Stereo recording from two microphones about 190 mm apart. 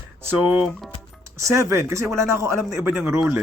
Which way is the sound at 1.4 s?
15° right (ahead or behind).